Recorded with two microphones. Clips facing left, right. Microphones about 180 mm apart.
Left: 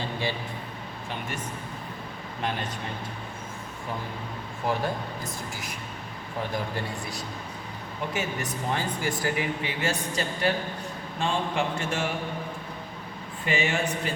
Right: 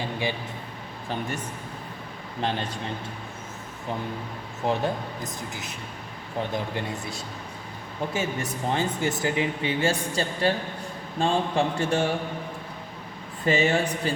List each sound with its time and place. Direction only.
0.0 s a sound: 15° right (ahead or behind)
4.6 s a man's voice: 25° right (ahead or behind)
13.4 s a man's voice: 40° right (ahead or behind)